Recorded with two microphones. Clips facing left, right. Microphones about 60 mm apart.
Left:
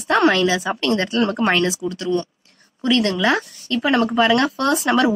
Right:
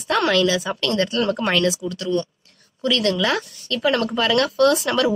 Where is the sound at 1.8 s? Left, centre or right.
Left.